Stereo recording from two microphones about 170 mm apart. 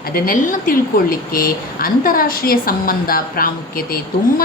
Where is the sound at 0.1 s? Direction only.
55° left (ahead or behind).